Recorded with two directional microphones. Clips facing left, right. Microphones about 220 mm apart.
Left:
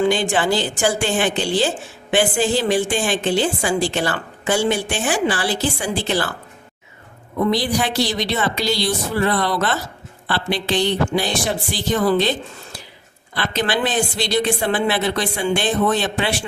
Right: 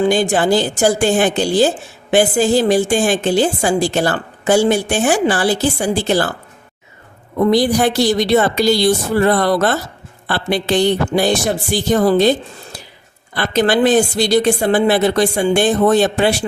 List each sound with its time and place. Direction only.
0.0 s a woman's voice: 40° right (ahead or behind)
7.3 s a woman's voice: 45° right (ahead or behind)
13.3 s a woman's voice: 45° right (ahead or behind)